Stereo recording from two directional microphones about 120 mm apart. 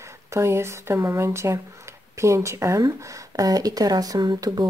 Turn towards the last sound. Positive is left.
turn(degrees=-35)  # may be behind; listen again after turning